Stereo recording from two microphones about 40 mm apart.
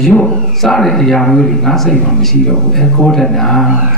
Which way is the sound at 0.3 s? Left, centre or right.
Centre.